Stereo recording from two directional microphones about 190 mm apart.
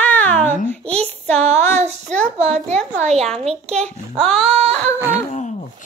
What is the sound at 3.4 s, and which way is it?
Child singing, 35° right (ahead or behind).